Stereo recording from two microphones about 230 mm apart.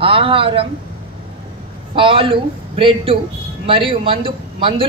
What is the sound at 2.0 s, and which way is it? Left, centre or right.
A woman's voice, right.